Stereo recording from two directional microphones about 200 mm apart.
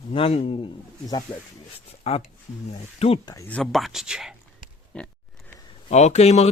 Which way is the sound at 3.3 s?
10° left (ahead or behind).